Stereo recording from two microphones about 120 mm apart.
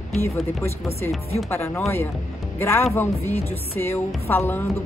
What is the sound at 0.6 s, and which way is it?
A woman's voice, 20° left (ahead or behind).